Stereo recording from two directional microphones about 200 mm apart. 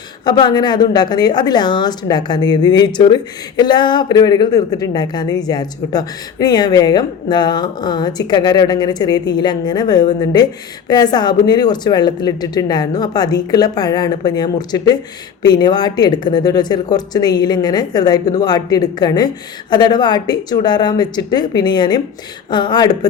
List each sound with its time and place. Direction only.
0.3 s speech: 20° left (ahead or behind)